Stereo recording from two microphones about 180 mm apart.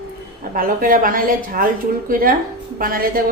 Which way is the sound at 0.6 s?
50° right (ahead or behind).